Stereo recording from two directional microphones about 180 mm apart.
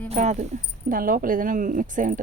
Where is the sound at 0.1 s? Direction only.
40° right (ahead or behind).